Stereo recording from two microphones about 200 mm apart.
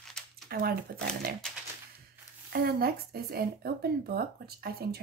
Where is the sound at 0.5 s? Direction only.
50° right (ahead or behind).